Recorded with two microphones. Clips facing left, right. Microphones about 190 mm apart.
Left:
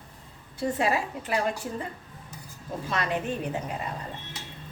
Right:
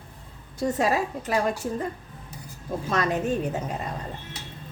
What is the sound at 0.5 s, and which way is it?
Speech, 40° right (ahead or behind).